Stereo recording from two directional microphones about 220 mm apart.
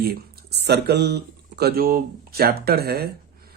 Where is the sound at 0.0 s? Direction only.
45° right (ahead or behind).